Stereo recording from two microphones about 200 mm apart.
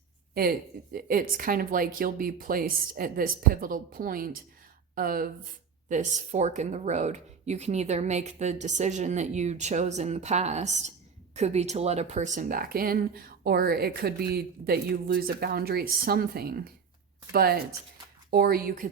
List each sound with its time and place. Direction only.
0.9 s speech: 45° right (ahead or behind)